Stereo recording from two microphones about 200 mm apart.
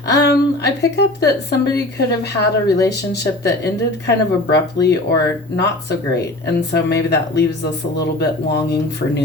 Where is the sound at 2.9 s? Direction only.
55° left (ahead or behind).